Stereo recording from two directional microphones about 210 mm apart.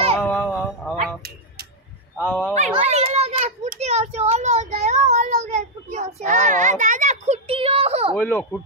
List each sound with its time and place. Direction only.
0.2 s a sound: 5° left (ahead or behind)
2.2 s speech: 5° left (ahead or behind)
2.5 s children playing: 35° right (ahead or behind)
8.2 s a child's voice: 10° left (ahead or behind)